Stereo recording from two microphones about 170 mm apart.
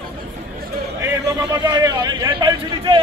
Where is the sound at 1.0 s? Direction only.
20° right (ahead or behind).